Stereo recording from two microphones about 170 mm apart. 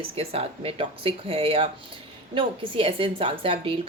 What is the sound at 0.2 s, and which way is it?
A woman's voice, 35° right (ahead or behind).